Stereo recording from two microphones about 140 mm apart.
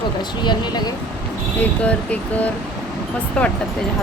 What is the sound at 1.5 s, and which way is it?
Speech, 10° left (ahead or behind).